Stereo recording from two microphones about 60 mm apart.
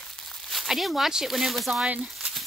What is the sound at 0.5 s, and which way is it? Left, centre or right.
Speech, centre.